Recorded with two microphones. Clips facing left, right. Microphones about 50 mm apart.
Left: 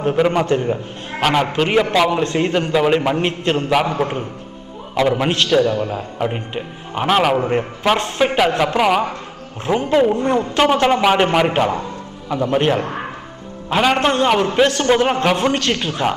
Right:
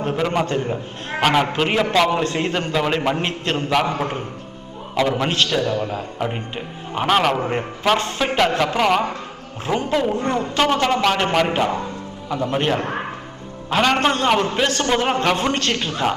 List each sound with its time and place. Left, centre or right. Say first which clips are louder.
0.0 s a man's voice: left 4 dB; centre
1.2 s a man's voice: left 1 dB; centre; by 11.8 s left
12.3 s a man's voice: left 4 dB; centre